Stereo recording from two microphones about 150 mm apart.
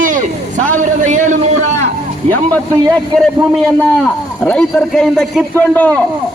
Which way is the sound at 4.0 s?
5° left (ahead or behind).